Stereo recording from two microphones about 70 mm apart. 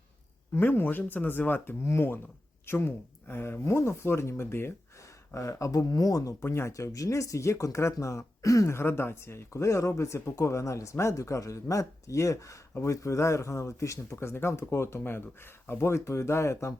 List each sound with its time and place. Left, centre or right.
0.5 s speech: left
1.8 s speech: left
5.3 s speech: left
6.4 s speech: left